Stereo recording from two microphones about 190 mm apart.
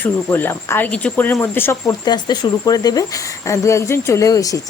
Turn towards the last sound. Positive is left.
turn(degrees=20)  # may be behind; listen again after turning